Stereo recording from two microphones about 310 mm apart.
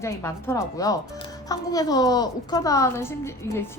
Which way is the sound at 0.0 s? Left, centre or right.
Centre.